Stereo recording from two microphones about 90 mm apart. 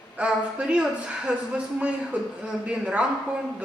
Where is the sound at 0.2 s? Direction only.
15° right (ahead or behind).